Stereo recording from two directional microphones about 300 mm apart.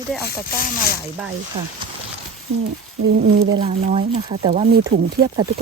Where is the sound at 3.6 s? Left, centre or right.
Centre.